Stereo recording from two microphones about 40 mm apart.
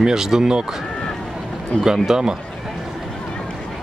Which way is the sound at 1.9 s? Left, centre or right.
Centre.